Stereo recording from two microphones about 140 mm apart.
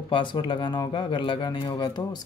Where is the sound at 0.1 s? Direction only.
35° left (ahead or behind).